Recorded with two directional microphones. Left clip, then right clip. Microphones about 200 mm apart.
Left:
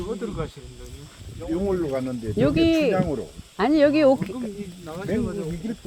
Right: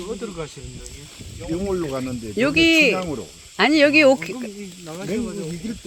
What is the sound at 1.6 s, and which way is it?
Speech, 50° right (ahead or behind).